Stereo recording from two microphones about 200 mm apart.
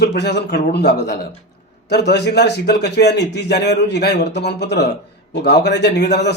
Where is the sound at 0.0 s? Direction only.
55° left (ahead or behind).